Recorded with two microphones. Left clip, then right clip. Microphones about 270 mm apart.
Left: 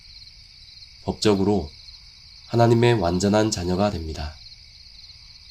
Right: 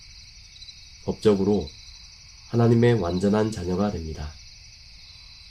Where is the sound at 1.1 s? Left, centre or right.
Left.